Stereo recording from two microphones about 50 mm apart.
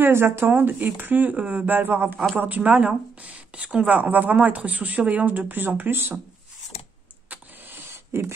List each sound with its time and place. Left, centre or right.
0.0 s speech: right
1.3 s speech: right
2.3 s a woman's voice: right
7.2 s vehicle: right